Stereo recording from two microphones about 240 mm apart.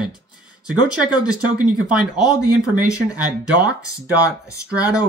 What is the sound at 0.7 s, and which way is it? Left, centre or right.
Speech, centre.